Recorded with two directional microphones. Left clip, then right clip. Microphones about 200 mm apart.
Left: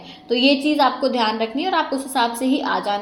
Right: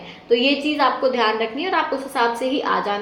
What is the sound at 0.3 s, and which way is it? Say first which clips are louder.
A woman's voice: left 1 dB; 45° left (ahead or behind).